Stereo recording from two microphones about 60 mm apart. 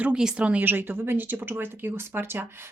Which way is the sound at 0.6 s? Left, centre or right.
Right.